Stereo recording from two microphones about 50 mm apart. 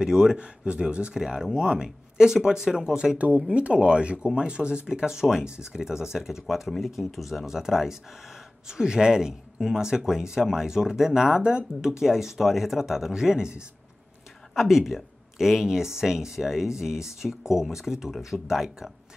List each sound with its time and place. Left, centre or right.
0.0 s speech: centre
3.2 s speech: right
14.5 s speech: centre